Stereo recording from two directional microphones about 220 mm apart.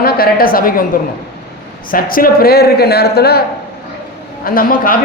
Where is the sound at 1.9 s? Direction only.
40° left (ahead or behind).